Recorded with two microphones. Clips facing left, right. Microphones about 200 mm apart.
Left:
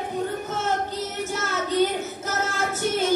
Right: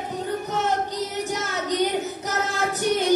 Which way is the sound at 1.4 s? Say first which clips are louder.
Left 4 dB; 15° right (ahead or behind).